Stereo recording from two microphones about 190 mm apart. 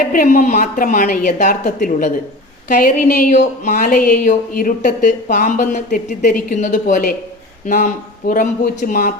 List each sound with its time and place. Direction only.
0.1 s speech: 40° left (ahead or behind)